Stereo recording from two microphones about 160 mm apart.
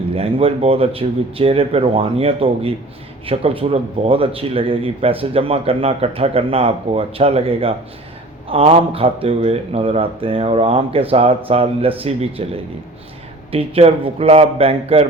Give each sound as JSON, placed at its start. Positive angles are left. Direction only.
{"t": 0.1, "sound": "speech", "side_deg": -35}
{"t": 13.5, "sound": "speech", "side_deg": -40}